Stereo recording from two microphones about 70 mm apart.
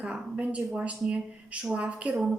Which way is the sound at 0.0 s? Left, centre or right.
Centre.